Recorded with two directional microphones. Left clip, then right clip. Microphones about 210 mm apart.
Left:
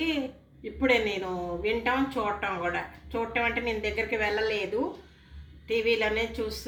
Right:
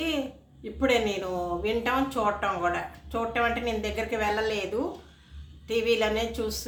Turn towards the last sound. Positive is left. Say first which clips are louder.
# right 1 dB
turn(degrees=-20)  # may be behind; listen again after turning